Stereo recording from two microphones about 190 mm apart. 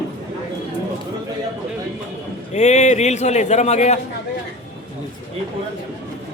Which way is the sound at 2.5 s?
35° left (ahead or behind).